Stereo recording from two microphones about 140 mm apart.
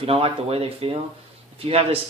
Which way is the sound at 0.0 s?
45° right (ahead or behind).